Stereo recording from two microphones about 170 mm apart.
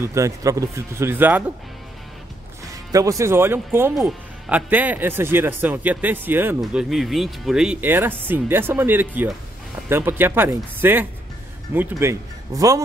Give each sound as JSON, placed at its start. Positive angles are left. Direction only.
{"t": 0.0, "sound": "speech", "side_deg": -20}
{"t": 2.9, "sound": "speech", "side_deg": -20}